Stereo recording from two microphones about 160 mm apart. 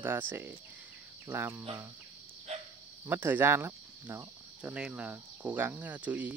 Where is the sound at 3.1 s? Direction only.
10° right (ahead or behind).